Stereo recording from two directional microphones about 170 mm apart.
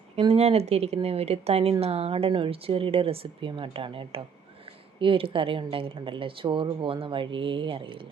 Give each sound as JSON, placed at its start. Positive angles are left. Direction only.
{"t": 0.3, "sound": "a woman's voice", "side_deg": -40}